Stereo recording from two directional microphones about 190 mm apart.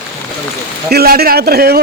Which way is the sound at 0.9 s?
55° right (ahead or behind).